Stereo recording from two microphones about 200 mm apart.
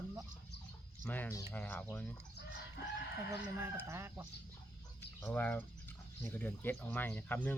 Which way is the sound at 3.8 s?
15° right (ahead or behind).